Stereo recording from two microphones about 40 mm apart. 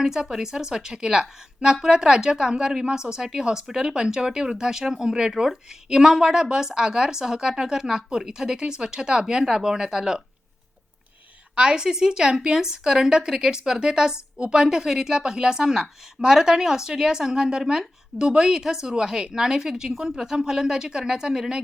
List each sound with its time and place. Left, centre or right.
0.0 s a woman's voice: centre
11.5 s a woman's voice: right